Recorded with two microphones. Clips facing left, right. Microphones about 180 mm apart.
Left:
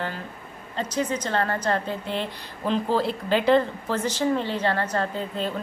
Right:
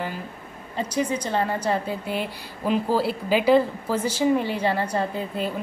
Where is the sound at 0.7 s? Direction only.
10° right (ahead or behind).